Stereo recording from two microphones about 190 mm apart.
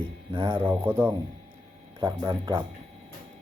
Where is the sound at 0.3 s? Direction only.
25° right (ahead or behind).